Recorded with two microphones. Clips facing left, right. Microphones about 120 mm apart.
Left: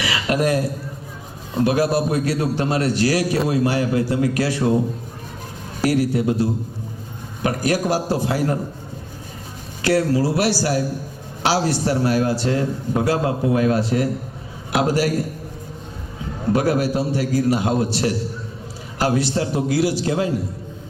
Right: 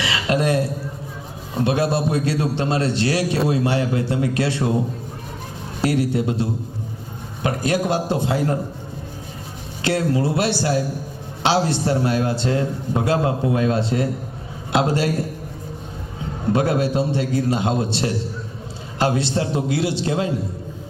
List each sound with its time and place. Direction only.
0.0 s a sound: 25° right (ahead or behind)
1.6 s a man's voice: 25° right (ahead or behind)
5.8 s a man's voice: 25° right (ahead or behind)
9.8 s a man's voice: 25° right (ahead or behind)
16.5 s a man's voice: 25° right (ahead or behind)